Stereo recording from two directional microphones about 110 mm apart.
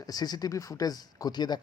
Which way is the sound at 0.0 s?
35° left (ahead or behind).